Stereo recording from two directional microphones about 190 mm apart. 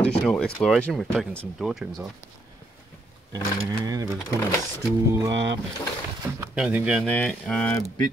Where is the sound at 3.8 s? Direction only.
20° right (ahead or behind).